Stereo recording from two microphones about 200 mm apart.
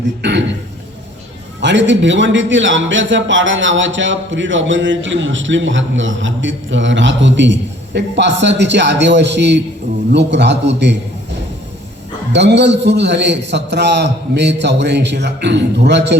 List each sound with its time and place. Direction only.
0.2 s a man's voice: 60° right (ahead or behind)
1.6 s a man's voice: 65° right (ahead or behind)
12.3 s a man's voice: 60° right (ahead or behind)